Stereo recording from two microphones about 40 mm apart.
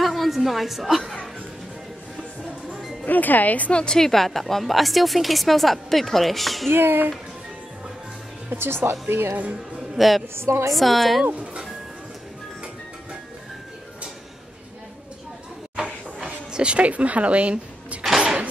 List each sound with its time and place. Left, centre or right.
0.0 s a sound: centre
3.1 s speech: left
3.7 s a woman's voice: left
4.0 s a woman's voice: centre
6.7 s speech: right
8.5 s speech: right
9.8 s a woman's voice: centre
10.3 s a woman's voice: right
10.7 s a woman's voice: centre
15.7 s a sound: right
16.7 s speech: right
18.0 s music: centre